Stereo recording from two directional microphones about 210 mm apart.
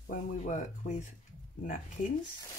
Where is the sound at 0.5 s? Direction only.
35° left (ahead or behind).